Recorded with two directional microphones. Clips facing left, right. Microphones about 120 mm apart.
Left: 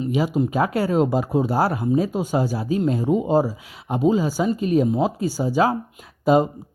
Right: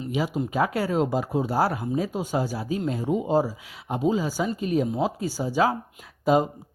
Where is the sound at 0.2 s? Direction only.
35° left (ahead or behind).